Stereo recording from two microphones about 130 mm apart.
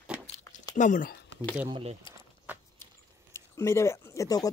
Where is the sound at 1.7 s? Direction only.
45° right (ahead or behind).